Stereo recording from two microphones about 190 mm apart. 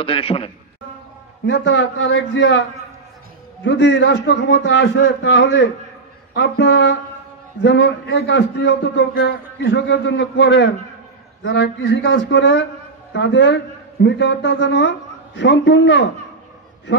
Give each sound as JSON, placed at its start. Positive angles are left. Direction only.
{"t": 0.0, "sound": "a man's voice", "side_deg": 30}
{"t": 1.4, "sound": "a man's voice", "side_deg": 65}
{"t": 3.6, "sound": "a man's voice", "side_deg": 70}